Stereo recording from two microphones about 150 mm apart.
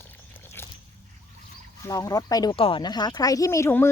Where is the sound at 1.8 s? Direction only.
25° left (ahead or behind).